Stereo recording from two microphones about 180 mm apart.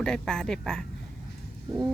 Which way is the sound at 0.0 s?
5° left (ahead or behind).